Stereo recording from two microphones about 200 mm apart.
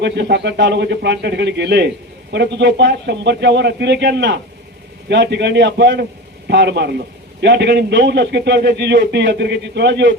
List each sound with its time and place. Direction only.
0.0 s a man's voice: 60° right (ahead or behind)